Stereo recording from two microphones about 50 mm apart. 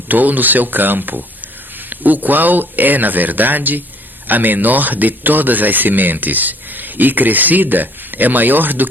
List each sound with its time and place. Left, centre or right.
0.1 s speech: right